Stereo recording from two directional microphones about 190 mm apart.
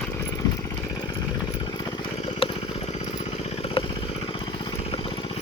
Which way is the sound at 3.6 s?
30° left (ahead or behind).